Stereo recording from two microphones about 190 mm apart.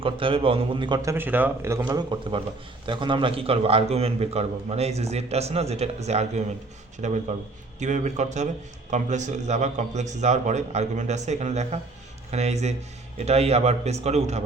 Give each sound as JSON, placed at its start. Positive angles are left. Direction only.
{"t": 0.0, "sound": "a man's voice", "side_deg": -30}